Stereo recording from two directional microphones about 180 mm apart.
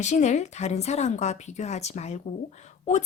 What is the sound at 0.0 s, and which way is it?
A woman's voice, 40° left (ahead or behind).